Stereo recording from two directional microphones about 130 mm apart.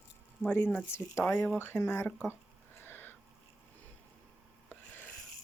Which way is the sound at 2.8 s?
15° left (ahead or behind).